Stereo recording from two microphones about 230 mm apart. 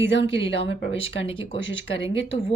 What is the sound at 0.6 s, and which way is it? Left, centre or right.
Speech, left.